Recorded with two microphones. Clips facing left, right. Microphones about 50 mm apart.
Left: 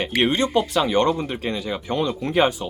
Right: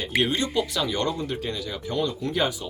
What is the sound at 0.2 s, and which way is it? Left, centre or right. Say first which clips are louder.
Speech: left 4 dB; left.